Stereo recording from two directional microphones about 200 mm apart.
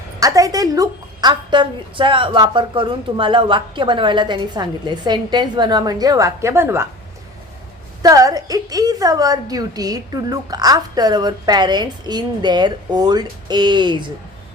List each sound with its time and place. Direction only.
0.2 s a woman's voice: 15° right (ahead or behind)
8.0 s a woman's voice: 20° right (ahead or behind)